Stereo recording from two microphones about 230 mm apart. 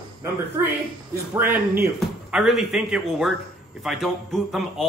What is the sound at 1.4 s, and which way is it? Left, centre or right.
A man's voice, centre.